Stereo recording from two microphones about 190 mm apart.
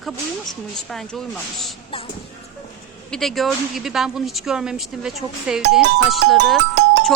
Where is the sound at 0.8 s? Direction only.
Centre (ahead or behind).